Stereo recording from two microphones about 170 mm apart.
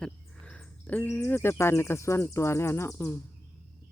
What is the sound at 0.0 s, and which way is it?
Speech, 5° left (ahead or behind).